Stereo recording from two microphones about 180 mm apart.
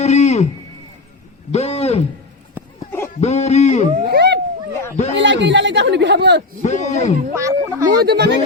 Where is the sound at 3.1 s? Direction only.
35° left (ahead or behind).